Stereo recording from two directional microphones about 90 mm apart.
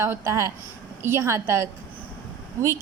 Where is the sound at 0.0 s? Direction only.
30° right (ahead or behind).